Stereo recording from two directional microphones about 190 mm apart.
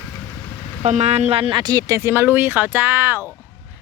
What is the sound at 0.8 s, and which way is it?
A woman's voice, 35° right (ahead or behind).